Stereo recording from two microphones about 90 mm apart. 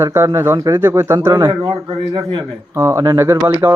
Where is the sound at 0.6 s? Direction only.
40° right (ahead or behind).